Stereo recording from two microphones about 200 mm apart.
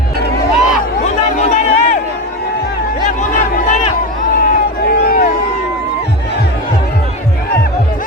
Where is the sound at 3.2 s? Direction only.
40° left (ahead or behind).